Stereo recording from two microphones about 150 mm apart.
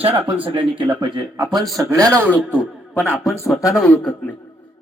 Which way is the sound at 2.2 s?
10° right (ahead or behind).